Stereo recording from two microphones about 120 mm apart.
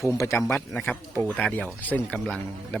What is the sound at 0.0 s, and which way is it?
Speech, 25° left (ahead or behind).